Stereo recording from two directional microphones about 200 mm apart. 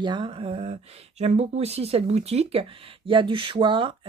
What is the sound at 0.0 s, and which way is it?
Speech, 25° right (ahead or behind).